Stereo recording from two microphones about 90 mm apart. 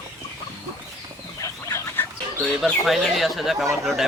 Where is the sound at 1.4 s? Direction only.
35° left (ahead or behind).